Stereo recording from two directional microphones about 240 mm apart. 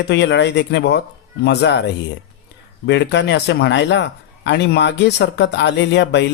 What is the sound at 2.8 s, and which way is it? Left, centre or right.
Speech, left.